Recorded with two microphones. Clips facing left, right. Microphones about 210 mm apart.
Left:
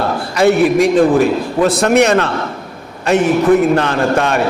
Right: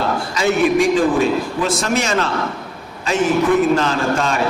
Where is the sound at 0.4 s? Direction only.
60° left (ahead or behind).